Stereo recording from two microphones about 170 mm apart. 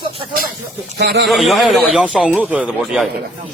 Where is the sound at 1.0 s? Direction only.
80° right.